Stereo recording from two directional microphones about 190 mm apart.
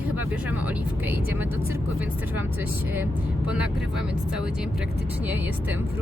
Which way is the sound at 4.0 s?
5° right (ahead or behind).